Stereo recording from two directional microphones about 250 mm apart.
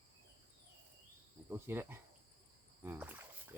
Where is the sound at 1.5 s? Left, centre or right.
Centre.